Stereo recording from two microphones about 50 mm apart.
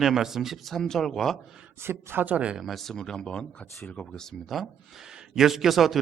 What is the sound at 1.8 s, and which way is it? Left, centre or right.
Speech, right.